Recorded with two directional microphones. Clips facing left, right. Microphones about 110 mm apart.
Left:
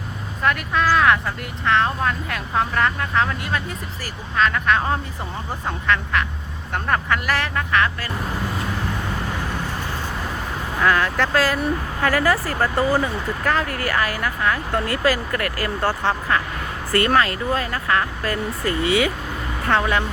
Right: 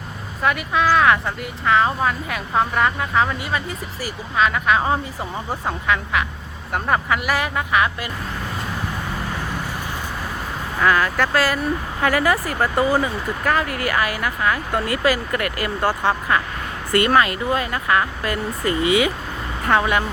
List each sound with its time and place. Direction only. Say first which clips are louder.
0.4 s speech: right 1 dB; 5° right (ahead or behind)
10.8 s speech: right 1 dB; 5° right (ahead or behind)